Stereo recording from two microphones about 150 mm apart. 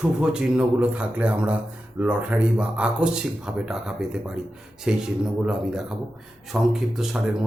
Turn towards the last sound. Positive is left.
turn(degrees=0)  # may be behind; listen again after turning